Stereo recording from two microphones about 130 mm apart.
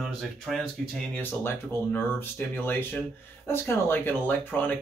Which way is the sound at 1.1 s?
15° left (ahead or behind).